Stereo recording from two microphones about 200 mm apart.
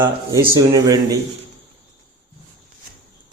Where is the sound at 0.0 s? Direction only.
15° right (ahead or behind).